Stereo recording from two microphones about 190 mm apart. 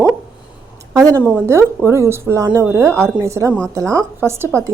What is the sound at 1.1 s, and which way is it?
A woman's voice, 10° right (ahead or behind).